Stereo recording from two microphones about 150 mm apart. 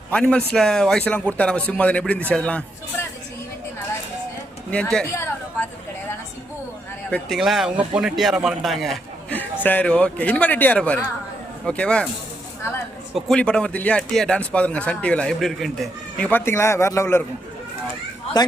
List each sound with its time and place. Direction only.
0.1 s speech: 5° left (ahead or behind)
4.7 s speech: 5° left (ahead or behind)
5.1 s a sound: 15° left (ahead or behind)
7.1 s speech: centre (ahead or behind)
9.3 s speech: 10° left (ahead or behind)
13.1 s speech: 5° left (ahead or behind)
18.3 s a man's voice: 25° left (ahead or behind)